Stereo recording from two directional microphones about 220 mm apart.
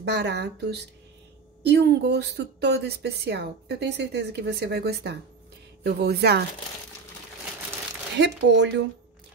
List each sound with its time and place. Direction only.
0.0 s speech: 50° right (ahead or behind)
8.2 s speech: 50° right (ahead or behind)